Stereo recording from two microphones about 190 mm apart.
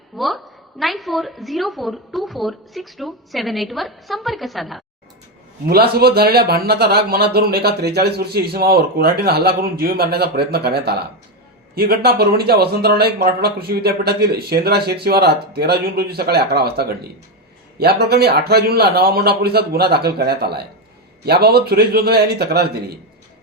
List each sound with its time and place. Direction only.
0.2 s a woman's voice: centre (ahead or behind)
5.6 s a man's voice: 55° right (ahead or behind)